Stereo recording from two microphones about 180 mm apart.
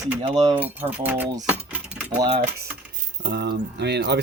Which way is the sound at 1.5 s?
5° right (ahead or behind).